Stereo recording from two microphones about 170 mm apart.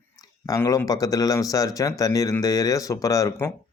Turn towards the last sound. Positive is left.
turn(degrees=15)  # may be behind; listen again after turning